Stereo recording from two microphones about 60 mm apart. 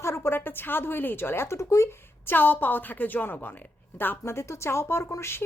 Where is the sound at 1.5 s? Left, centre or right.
Left.